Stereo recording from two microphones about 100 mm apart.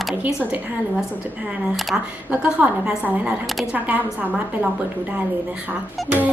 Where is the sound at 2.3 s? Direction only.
15° right (ahead or behind).